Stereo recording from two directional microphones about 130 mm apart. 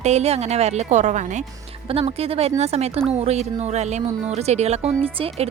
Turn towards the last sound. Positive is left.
turn(degrees=-50)  # may be behind; listen again after turning